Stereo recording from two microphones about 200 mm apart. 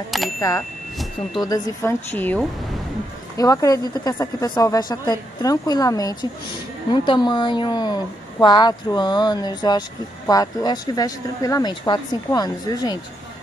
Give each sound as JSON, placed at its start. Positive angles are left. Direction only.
{"t": 0.4, "sound": "a woman's voice", "side_deg": 15}